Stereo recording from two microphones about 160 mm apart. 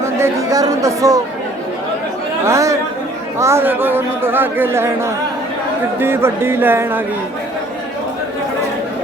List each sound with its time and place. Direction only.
0.0 s speech: 20° right (ahead or behind)
2.5 s speech: 20° right (ahead or behind)